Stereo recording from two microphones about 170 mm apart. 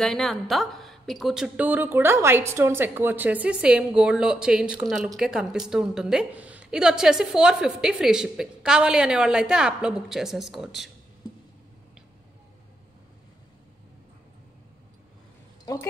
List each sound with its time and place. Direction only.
0.0 s a woman's voice: centre (ahead or behind)
15.6 s speech: 20° left (ahead or behind)